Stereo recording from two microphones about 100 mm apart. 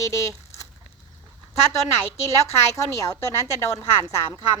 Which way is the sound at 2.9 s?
30° left (ahead or behind).